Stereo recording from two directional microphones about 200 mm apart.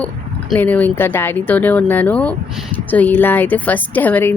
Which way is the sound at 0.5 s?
5° left (ahead or behind).